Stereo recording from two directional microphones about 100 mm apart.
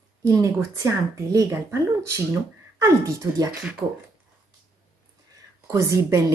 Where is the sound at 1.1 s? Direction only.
30° right (ahead or behind).